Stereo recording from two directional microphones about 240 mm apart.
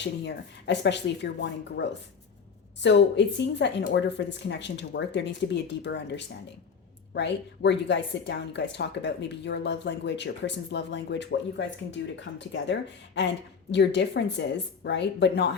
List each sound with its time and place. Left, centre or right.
0.3 s a woman's voice: left